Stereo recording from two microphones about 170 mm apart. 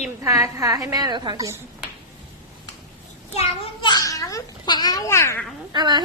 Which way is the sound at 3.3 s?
35° left (ahead or behind).